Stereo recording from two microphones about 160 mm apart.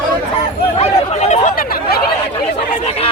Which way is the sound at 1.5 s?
65° left (ahead or behind).